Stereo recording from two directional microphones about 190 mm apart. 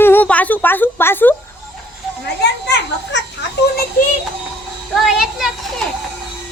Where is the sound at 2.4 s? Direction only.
65° left (ahead or behind).